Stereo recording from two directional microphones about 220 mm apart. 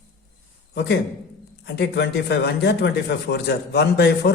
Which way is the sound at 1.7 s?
50° left (ahead or behind).